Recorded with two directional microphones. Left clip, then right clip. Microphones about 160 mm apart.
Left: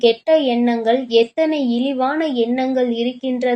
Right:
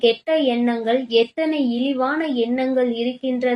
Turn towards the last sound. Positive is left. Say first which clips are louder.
# left 2 dB
turn(degrees=40)  # may be behind; listen again after turning